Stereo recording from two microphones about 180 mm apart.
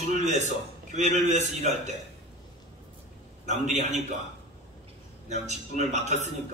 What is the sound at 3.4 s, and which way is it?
Speech, 40° right (ahead or behind).